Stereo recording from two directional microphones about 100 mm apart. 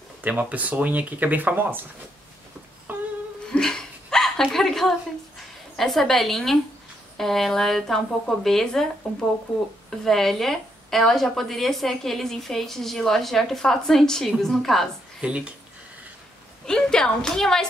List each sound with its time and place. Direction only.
0.2 s speech: 15° right (ahead or behind)
2.9 s music: 20° right (ahead or behind)
3.4 s a sound: 5° left (ahead or behind)
5.8 s a woman's voice: centre (ahead or behind)
15.2 s speech: 10° right (ahead or behind)
16.6 s a woman's voice: 5° left (ahead or behind)